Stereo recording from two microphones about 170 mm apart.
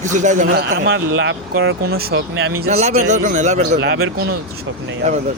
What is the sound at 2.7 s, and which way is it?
Speech, 40° right (ahead or behind).